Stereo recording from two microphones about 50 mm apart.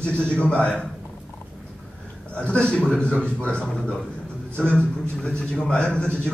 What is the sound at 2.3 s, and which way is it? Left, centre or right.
A man's voice, left.